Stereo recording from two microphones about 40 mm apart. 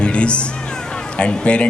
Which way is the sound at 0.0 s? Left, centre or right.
Left.